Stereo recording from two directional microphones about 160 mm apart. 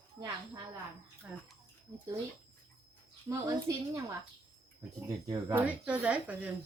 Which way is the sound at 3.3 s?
20° right (ahead or behind).